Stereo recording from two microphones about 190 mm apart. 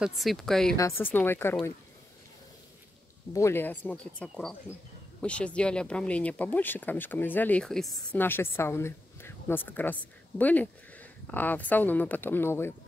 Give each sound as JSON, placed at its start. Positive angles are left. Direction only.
{"t": 0.0, "sound": "speech", "side_deg": 0}
{"t": 0.7, "sound": "speech", "side_deg": 15}
{"t": 3.3, "sound": "speech", "side_deg": 15}
{"t": 8.2, "sound": "speech", "side_deg": 10}